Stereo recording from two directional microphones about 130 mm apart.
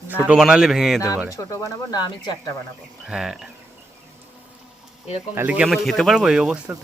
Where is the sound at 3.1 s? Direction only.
5° right (ahead or behind).